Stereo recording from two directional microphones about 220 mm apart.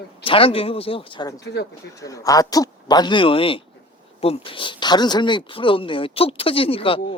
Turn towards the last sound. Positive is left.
turn(degrees=25)  # may be behind; listen again after turning